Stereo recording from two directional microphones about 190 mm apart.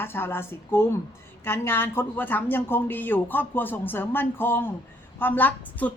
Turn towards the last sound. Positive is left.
turn(degrees=10)  # may be behind; listen again after turning